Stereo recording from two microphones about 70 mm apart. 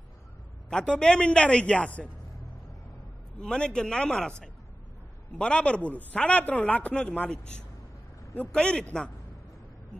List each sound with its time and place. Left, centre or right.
0.7 s a man's voice: centre
3.3 s a man's voice: centre